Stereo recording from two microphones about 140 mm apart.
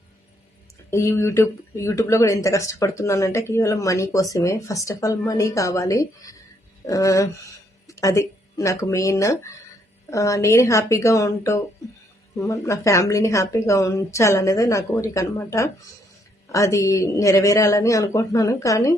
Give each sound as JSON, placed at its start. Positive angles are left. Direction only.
{"t": 0.9, "sound": "speech", "side_deg": 20}